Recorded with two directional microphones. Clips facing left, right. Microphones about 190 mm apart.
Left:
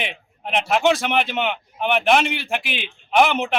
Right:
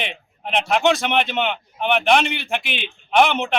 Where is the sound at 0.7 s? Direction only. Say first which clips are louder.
Even; 5° left (ahead or behind).